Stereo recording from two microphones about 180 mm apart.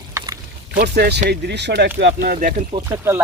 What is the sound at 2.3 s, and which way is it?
Speech, 45° right (ahead or behind).